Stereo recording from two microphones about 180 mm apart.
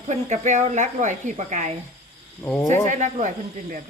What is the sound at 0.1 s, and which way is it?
Speech, 40° right (ahead or behind).